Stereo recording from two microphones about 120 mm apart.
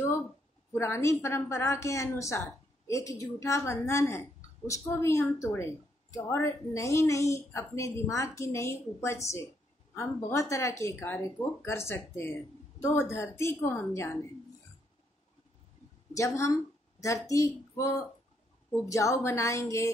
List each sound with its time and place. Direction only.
0.7 s a woman's voice: 20° left (ahead or behind)
16.1 s a woman's voice: 25° left (ahead or behind)